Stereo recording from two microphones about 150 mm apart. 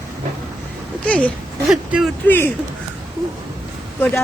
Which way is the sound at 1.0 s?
10° left (ahead or behind).